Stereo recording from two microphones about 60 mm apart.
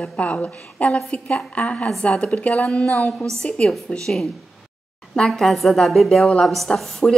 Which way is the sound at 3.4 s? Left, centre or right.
Centre.